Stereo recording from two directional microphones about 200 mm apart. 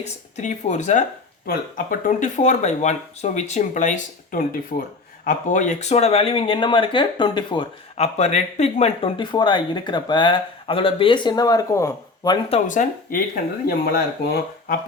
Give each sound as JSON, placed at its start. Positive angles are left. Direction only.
{"t": 0.0, "sound": "speech", "side_deg": 35}
{"t": 12.5, "sound": "speech", "side_deg": 40}